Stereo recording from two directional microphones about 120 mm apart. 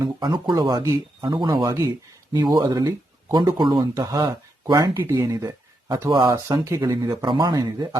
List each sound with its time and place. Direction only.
0.0 s speech: 35° right (ahead or behind)